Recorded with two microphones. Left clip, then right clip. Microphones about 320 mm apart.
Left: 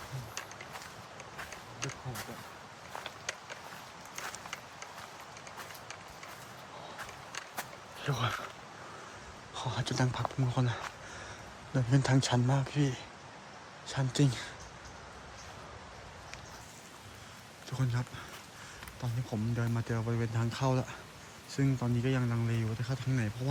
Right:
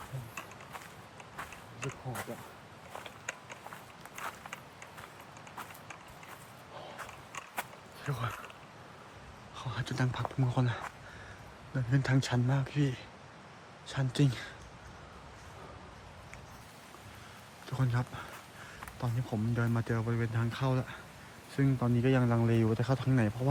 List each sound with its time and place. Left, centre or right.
8.0 s speech: centre
9.6 s speech: centre
17.7 s speech: centre